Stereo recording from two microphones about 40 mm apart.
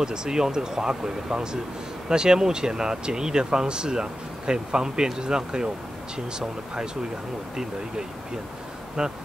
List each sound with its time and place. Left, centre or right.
0.0 s speech: centre